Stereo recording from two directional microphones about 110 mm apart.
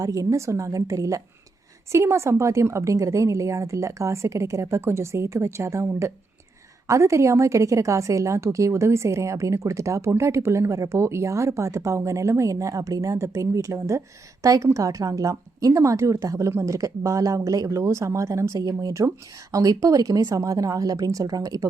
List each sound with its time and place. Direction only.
0.0 s a woman's voice: 30° right (ahead or behind)